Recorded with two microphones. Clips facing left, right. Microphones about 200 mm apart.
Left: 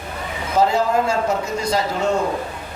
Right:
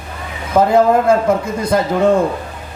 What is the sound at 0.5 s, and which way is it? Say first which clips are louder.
A man's voice: right 6 dB; 55° right (ahead or behind).